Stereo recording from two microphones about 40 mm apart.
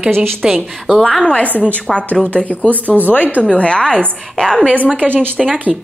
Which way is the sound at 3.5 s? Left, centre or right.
Left.